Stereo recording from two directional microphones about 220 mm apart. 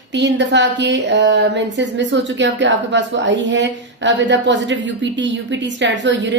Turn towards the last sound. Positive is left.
turn(degrees=-55)  # may be behind; listen again after turning